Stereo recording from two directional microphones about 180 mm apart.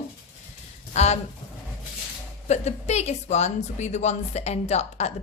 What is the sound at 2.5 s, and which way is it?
A woman's voice, 40° left (ahead or behind).